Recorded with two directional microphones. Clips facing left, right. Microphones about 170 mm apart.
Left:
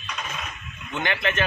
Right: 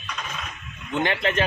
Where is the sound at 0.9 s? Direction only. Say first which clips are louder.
Right 3 dB; 35° right (ahead or behind).